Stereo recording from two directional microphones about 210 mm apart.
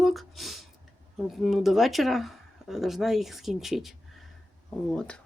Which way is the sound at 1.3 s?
Centre (ahead or behind).